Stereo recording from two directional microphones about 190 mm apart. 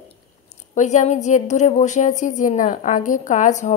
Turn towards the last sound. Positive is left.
turn(degrees=40)  # may be behind; listen again after turning